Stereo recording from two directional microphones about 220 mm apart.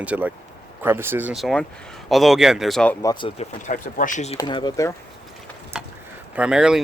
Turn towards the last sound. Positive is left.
turn(degrees=-5)  # may be behind; listen again after turning